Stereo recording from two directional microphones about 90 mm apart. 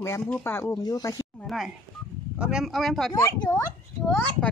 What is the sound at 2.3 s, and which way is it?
Speech, 10° right (ahead or behind).